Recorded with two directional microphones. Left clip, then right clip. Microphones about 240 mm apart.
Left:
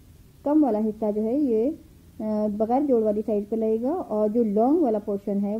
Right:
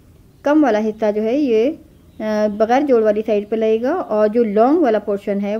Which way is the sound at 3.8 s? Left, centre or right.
Centre.